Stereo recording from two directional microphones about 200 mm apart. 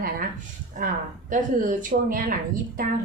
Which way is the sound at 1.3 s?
40° right (ahead or behind).